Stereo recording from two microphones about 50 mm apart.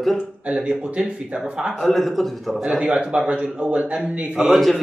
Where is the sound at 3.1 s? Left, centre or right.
Right.